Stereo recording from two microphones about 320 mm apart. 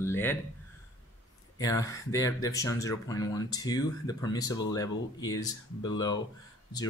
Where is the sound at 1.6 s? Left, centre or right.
Centre.